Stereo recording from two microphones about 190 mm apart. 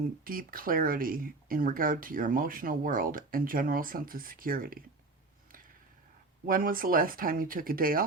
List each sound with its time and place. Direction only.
0.3 s speech: 50° right (ahead or behind)
6.4 s speech: 50° right (ahead or behind)